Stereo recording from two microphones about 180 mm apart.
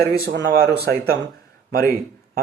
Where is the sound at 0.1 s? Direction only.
60° right (ahead or behind).